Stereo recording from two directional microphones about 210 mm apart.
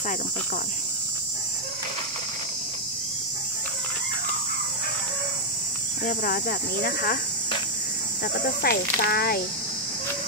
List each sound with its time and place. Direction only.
6.0 s speech: 45° left (ahead or behind)
8.6 s speech: 45° left (ahead or behind)